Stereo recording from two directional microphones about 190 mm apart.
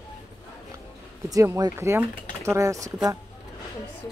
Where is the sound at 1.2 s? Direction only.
20° right (ahead or behind).